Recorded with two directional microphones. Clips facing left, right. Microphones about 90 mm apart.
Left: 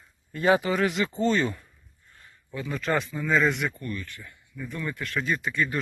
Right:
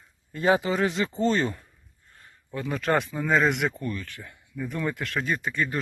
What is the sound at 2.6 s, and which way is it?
Speech, 55° right (ahead or behind).